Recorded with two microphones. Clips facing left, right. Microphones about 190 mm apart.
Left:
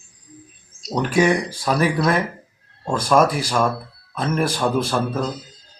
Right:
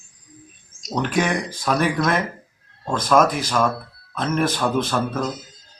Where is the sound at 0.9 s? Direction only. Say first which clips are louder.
Left 4 dB; 10° left (ahead or behind).